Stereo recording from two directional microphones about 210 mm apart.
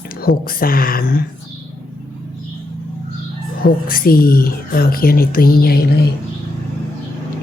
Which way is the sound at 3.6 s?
45° left (ahead or behind).